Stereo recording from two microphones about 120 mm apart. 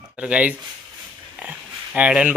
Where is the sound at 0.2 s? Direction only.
10° right (ahead or behind).